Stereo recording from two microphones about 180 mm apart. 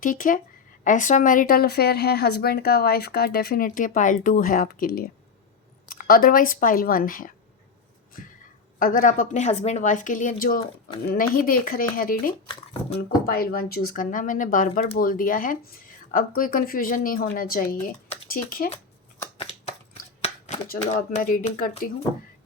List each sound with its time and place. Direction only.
0.0 s speech: 50° left (ahead or behind)
8.8 s speech: 50° left (ahead or behind)
20.2 s a sound: 35° left (ahead or behind)
21.1 s speech: 50° left (ahead or behind)